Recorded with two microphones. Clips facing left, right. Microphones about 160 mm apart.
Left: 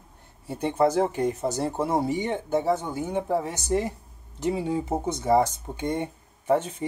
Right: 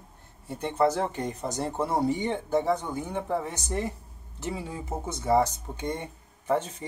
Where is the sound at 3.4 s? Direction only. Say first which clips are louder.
Left 5 dB; 15° left (ahead or behind).